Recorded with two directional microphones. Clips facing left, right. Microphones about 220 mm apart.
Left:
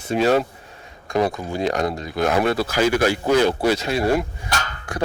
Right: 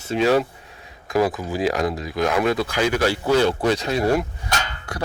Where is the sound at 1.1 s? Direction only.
5° right (ahead or behind).